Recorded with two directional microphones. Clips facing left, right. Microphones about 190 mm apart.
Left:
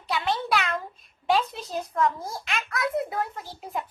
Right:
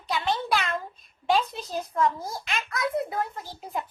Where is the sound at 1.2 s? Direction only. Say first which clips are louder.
Even; centre (ahead or behind).